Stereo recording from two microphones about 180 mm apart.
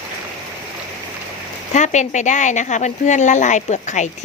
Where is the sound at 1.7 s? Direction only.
40° left (ahead or behind).